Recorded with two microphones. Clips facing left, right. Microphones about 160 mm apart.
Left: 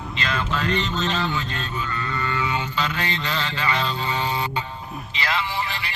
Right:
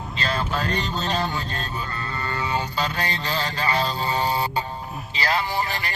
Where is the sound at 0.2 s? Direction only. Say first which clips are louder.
Even; 35° right (ahead or behind).